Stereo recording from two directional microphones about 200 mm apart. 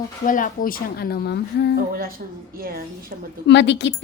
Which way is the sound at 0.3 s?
40° left (ahead or behind).